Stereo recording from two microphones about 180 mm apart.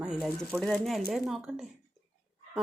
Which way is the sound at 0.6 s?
5° left (ahead or behind).